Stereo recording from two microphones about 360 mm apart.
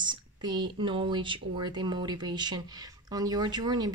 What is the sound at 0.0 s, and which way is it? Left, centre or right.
Speech, centre.